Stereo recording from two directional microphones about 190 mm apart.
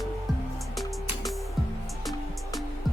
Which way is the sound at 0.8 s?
Centre (ahead or behind).